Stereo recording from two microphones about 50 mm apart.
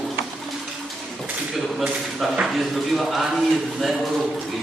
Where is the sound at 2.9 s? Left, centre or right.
Centre.